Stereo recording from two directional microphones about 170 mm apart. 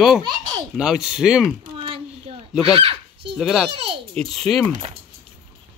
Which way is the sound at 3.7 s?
30° right (ahead or behind).